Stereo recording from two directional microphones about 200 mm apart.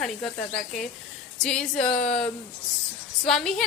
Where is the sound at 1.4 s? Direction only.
5° left (ahead or behind).